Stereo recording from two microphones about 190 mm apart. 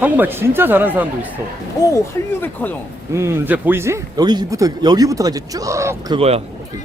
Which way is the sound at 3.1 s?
15° right (ahead or behind).